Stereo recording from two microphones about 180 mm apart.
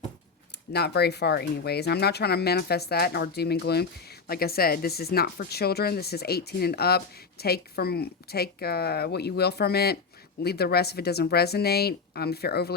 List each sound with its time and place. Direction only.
0.7 s speech: 65° left (ahead or behind)